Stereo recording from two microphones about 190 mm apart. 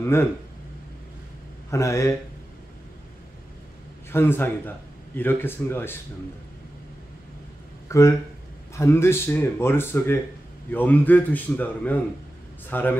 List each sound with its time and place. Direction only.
0.0 s speech: 15° left (ahead or behind)
1.7 s speech: 15° left (ahead or behind)
4.1 s speech: 10° left (ahead or behind)
7.9 s speech: 15° left (ahead or behind)